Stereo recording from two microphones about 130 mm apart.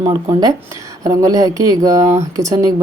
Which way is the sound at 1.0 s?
25° right (ahead or behind).